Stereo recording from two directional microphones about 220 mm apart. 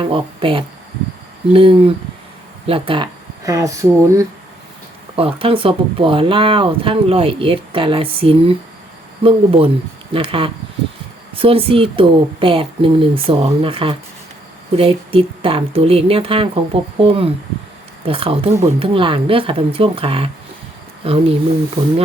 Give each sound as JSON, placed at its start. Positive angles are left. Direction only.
{"t": 0.0, "sound": "speech", "side_deg": -25}
{"t": 5.1, "sound": "speech", "side_deg": -25}